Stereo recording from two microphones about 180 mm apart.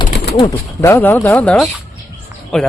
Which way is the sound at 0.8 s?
10° left (ahead or behind).